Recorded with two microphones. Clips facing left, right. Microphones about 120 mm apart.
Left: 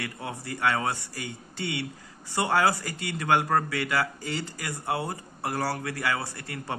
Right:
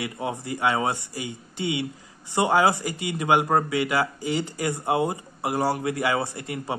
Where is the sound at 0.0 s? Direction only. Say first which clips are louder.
Right 6 dB; 20° right (ahead or behind).